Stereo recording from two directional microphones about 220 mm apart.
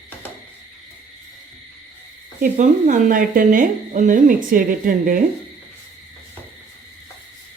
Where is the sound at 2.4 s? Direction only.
35° right (ahead or behind).